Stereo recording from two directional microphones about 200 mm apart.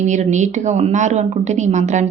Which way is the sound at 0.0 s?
35° right (ahead or behind).